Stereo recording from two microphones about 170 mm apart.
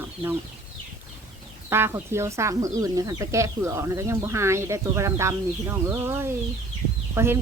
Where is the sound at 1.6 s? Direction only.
15° right (ahead or behind).